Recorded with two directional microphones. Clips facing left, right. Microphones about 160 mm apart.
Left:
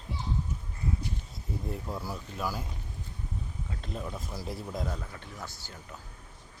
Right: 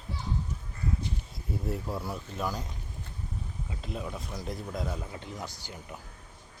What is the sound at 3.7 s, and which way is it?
Speech, 5° right (ahead or behind).